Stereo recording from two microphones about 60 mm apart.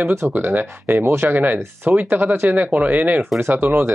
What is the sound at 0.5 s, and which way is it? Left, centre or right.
Speech, right.